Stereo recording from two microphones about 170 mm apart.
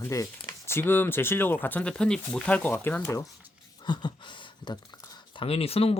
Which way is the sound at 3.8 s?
25° left (ahead or behind).